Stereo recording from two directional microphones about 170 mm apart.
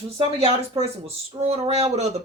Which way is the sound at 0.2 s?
35° right (ahead or behind).